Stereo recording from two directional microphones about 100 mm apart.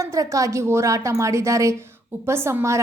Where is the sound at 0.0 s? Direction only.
35° right (ahead or behind).